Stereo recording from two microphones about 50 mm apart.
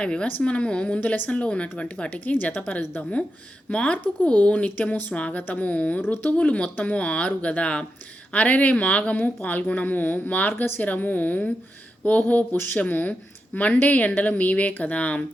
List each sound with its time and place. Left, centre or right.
0.0 s a woman's voice: left
1.0 s a woman's voice: left
1.4 s a woman's voice: left
3.9 s a woman's voice: left
6.0 s speech: left
6.3 s a woman's voice: left